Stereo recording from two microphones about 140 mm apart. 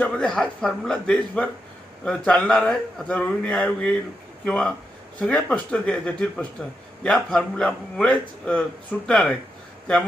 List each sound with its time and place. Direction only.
0.0 s a man's voice: 10° left (ahead or behind)